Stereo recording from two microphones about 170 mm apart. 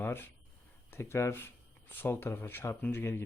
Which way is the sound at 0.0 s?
10° left (ahead or behind).